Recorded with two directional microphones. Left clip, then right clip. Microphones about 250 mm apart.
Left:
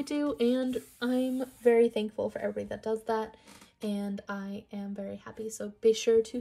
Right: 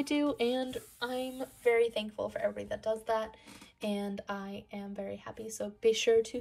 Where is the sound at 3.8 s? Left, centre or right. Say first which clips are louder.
Even; centre.